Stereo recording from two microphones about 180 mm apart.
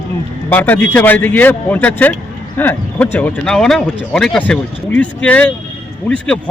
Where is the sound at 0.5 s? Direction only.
10° left (ahead or behind).